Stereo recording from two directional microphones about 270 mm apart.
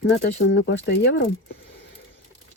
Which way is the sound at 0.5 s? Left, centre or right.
Left.